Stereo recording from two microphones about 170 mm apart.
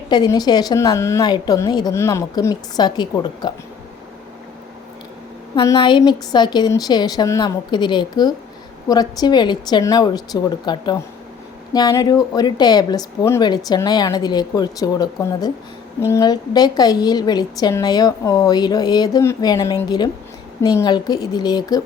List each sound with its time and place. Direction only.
0.1 s a woman's voice: 25° left (ahead or behind)
5.7 s a woman's voice: 30° left (ahead or behind)